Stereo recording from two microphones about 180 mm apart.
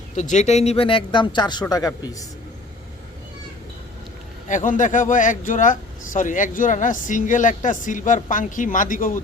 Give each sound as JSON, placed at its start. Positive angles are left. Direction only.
{"t": 0.2, "sound": "a man's voice", "side_deg": 40}
{"t": 4.4, "sound": "speech", "side_deg": 45}